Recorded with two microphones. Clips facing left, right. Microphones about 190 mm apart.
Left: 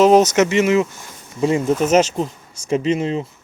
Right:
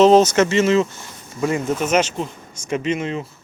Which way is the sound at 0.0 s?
15° left (ahead or behind).